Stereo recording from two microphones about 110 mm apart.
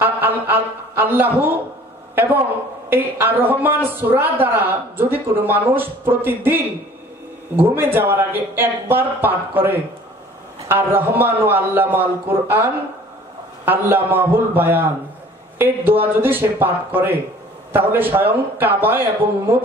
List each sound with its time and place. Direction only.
0.0 s a man's voice: 20° right (ahead or behind)
2.9 s a man's voice: 20° right (ahead or behind)
13.7 s speech: 20° right (ahead or behind)